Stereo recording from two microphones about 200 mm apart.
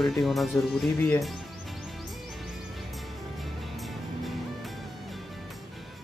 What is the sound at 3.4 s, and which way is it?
Music, centre (ahead or behind).